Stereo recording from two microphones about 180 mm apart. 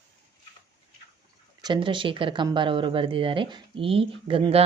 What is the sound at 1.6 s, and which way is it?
Speech, 25° right (ahead or behind).